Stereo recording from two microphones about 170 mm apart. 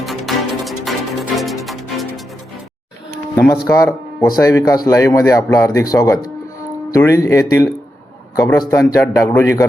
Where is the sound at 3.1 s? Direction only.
15° left (ahead or behind).